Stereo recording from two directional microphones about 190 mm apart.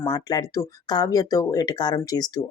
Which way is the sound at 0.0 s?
20° left (ahead or behind).